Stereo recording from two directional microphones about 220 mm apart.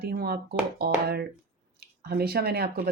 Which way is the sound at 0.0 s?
45° right (ahead or behind).